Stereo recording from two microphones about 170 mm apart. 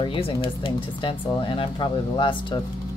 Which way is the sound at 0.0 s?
30° left (ahead or behind).